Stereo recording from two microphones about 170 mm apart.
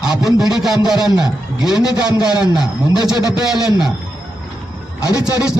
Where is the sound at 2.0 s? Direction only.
25° left (ahead or behind).